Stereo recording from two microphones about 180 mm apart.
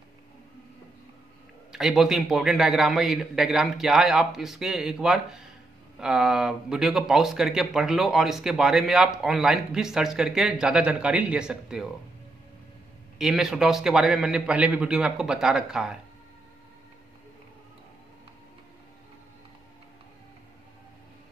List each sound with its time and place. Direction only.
1.7 s speech: centre (ahead or behind)
13.2 s speech: centre (ahead or behind)